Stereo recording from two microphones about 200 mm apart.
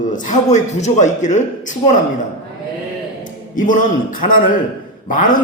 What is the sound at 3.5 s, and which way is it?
A man's voice, 40° left (ahead or behind).